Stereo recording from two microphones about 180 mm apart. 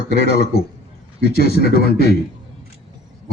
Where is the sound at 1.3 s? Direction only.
60° left (ahead or behind).